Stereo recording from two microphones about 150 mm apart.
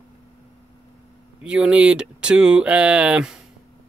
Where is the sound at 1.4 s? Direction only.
5° right (ahead or behind).